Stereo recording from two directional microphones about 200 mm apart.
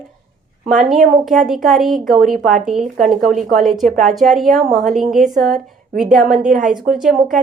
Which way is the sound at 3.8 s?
40° right (ahead or behind).